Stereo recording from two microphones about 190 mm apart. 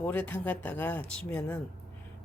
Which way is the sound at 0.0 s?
10° left (ahead or behind).